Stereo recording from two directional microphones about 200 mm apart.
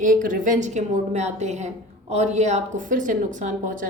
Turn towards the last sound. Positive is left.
turn(degrees=-40)  # may be behind; listen again after turning